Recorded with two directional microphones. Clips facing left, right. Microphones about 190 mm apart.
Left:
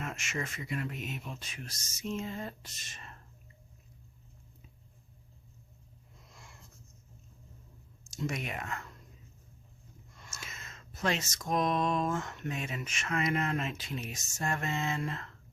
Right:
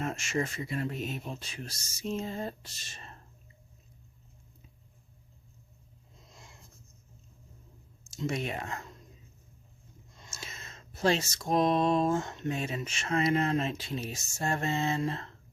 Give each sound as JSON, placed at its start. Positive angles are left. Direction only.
{"t": 0.0, "sound": "speech", "side_deg": -35}
{"t": 6.1, "sound": "wheeze", "side_deg": -20}
{"t": 8.3, "sound": "speech", "side_deg": -30}
{"t": 10.1, "sound": "speech", "side_deg": -25}